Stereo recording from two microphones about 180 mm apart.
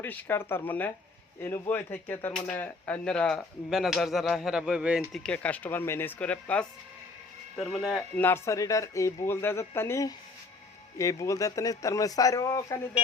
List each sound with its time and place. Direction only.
0.0 s speech: 10° left (ahead or behind)